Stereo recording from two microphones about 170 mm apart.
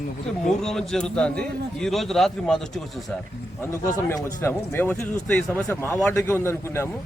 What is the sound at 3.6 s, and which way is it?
A man's voice, 15° left (ahead or behind).